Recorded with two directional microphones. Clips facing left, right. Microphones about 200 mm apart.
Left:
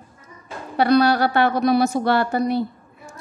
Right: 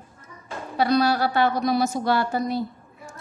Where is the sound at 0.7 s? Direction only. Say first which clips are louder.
Left 4 dB; 65° left (ahead or behind).